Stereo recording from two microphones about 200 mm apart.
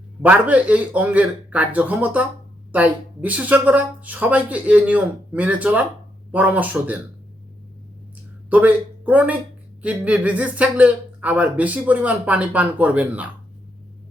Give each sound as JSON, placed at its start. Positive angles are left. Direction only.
{"t": 0.2, "sound": "speech", "side_deg": -5}
{"t": 8.4, "sound": "speech", "side_deg": -10}